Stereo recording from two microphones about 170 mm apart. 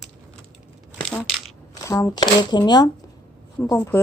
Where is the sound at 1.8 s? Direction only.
20° left (ahead or behind).